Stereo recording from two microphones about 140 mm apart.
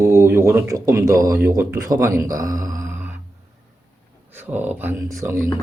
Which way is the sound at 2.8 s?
15° right (ahead or behind).